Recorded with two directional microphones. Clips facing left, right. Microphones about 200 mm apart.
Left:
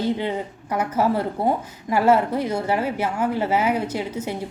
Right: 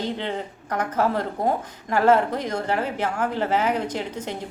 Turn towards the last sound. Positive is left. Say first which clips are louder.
# left 2 dB
turn(degrees=10)  # may be behind; listen again after turning